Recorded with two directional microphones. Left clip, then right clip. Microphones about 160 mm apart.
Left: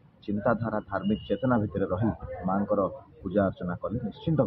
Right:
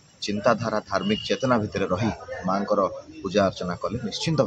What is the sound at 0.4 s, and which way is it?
Speech, 35° right (ahead or behind).